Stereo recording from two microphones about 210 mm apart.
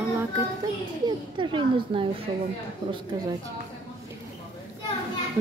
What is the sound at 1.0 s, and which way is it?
A woman's voice, 25° right (ahead or behind).